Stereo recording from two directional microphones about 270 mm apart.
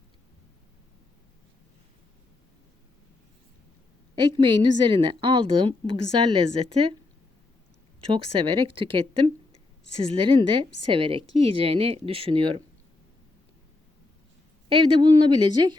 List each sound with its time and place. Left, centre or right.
4.1 s a woman's voice: centre
8.1 s a woman's voice: centre
14.7 s a woman's voice: centre